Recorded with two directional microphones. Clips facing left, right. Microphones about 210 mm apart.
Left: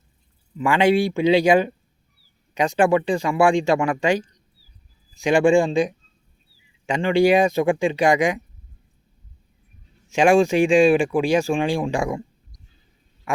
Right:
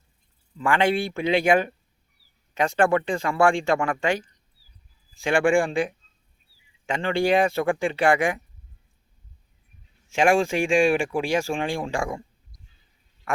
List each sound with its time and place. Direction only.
0.5 s speech: 15° left (ahead or behind)
10.1 s speech: 20° left (ahead or behind)